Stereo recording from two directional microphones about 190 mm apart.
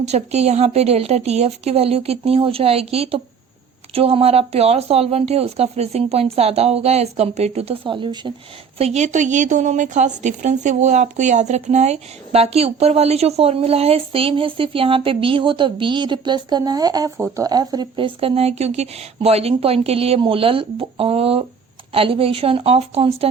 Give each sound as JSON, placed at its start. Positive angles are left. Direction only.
{"t": 0.0, "sound": "a woman's voice", "side_deg": -35}
{"t": 8.8, "sound": "a woman's voice", "side_deg": -35}